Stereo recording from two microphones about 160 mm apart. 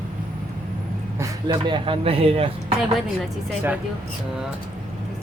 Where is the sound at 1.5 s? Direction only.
30° right (ahead or behind).